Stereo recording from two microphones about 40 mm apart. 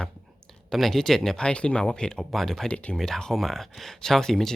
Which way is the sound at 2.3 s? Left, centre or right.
Centre.